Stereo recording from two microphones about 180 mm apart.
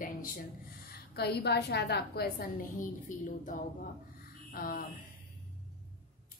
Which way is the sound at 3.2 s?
45° left (ahead or behind).